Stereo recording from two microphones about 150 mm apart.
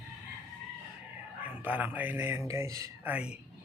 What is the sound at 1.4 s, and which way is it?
Speech, 10° right (ahead or behind).